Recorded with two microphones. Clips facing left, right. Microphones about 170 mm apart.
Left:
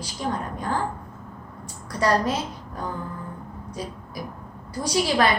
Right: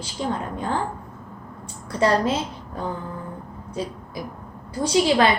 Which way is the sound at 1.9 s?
25° right (ahead or behind).